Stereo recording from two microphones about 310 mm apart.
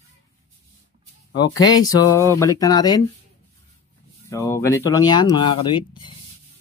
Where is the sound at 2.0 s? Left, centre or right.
Centre.